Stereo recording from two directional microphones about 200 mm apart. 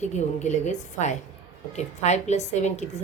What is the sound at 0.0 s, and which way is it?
A woman's voice, 35° left (ahead or behind).